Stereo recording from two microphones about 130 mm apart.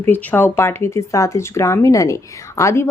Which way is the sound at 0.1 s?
15° left (ahead or behind).